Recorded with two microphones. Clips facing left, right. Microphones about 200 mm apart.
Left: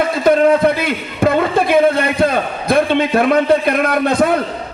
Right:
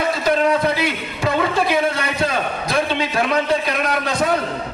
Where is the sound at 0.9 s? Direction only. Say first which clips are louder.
Left 6 dB; 55° left (ahead or behind).